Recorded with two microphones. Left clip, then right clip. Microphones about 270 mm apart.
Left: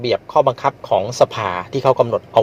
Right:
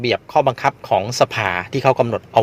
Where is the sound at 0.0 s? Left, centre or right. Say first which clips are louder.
Left 1 dB; right.